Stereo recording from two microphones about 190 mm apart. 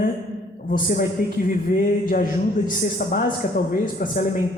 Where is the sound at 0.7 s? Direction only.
45° left (ahead or behind).